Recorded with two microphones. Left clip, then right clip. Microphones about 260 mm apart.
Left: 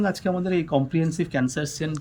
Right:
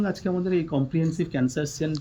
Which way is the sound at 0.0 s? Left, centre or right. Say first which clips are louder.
Left 2 dB; centre.